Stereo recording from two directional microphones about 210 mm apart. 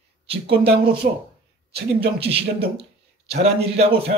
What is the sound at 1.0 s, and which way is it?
Speech, 45° right (ahead or behind).